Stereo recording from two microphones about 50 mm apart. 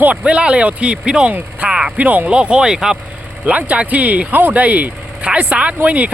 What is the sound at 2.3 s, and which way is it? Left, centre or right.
Speech, right.